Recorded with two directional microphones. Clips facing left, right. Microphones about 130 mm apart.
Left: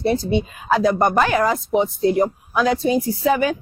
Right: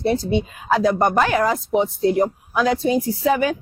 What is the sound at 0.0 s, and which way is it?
Speech, 10° left (ahead or behind).